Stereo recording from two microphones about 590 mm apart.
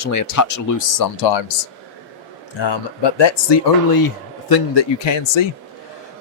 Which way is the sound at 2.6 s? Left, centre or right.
Left.